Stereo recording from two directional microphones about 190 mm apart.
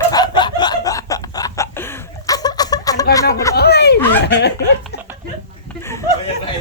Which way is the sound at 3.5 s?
60° left (ahead or behind).